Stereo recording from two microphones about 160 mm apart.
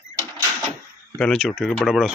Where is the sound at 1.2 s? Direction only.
Centre (ahead or behind).